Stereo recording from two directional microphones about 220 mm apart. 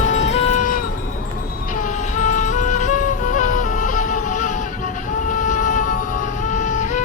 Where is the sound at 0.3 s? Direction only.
30° left (ahead or behind).